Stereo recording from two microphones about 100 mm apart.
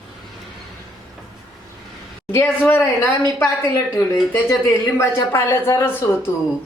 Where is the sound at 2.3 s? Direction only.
20° left (ahead or behind).